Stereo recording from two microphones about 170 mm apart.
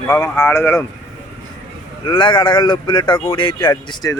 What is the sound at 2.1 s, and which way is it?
Speech, 30° left (ahead or behind).